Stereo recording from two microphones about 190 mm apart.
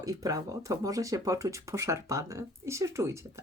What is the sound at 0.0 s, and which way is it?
Speech, 20° right (ahead or behind).